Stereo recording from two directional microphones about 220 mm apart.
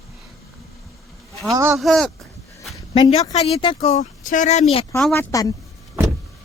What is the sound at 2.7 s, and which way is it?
Speech, 20° left (ahead or behind).